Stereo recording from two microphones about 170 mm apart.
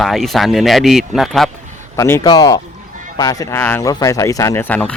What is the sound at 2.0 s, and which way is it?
Speech, 15° left (ahead or behind).